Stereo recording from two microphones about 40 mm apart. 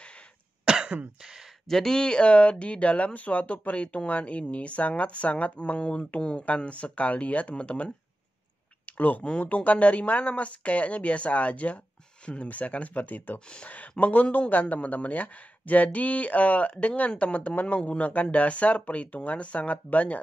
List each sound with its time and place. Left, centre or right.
0.7 s cough: right
1.2 s speech: centre
1.7 s speech: centre
2.0 s speech: left
5.8 s speech: left
6.4 s speech: left
8.8 s a sound: left
9.4 s speech: left